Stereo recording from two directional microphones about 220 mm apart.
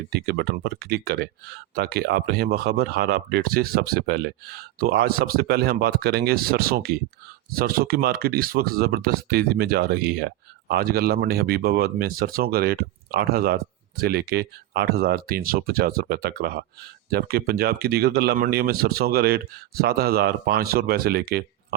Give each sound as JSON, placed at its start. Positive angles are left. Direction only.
{"t": 0.1, "sound": "speech", "side_deg": -45}